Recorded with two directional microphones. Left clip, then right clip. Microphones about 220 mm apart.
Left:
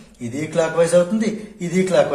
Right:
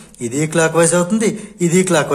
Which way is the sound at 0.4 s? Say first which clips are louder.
Right 4 dB; 45° right (ahead or behind).